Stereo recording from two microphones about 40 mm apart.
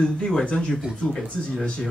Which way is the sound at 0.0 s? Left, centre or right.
Centre.